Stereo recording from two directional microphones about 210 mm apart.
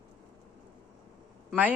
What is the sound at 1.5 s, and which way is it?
Speech, 5° right (ahead or behind).